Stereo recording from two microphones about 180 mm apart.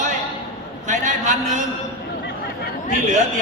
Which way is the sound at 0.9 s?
45° right (ahead or behind).